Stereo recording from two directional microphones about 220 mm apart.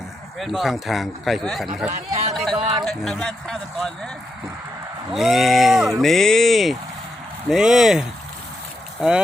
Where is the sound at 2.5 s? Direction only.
25° right (ahead or behind).